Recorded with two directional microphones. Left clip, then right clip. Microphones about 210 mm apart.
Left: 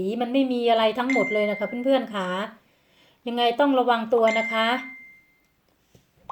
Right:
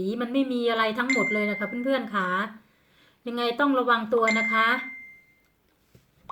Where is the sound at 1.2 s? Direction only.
20° left (ahead or behind).